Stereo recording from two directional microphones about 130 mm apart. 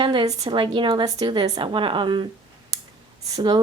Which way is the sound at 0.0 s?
40° right (ahead or behind).